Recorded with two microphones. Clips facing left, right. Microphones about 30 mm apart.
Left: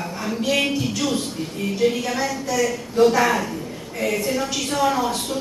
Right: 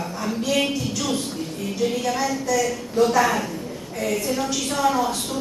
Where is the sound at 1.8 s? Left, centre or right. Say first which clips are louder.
Left 4 dB; left.